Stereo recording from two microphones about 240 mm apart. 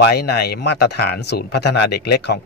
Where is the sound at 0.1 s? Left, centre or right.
Left.